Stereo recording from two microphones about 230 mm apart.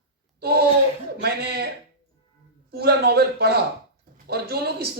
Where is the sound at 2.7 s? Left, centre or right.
Right.